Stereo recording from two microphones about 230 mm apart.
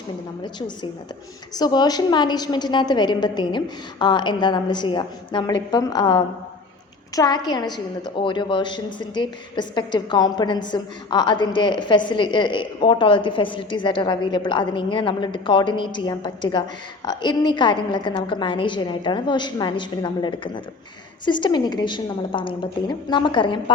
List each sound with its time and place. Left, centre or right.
1.5 s a woman's voice: centre